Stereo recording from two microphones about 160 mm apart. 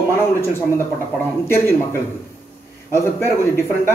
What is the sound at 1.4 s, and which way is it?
Speech, 15° left (ahead or behind).